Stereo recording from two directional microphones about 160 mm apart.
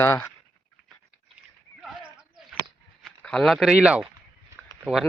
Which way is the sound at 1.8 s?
5° right (ahead or behind).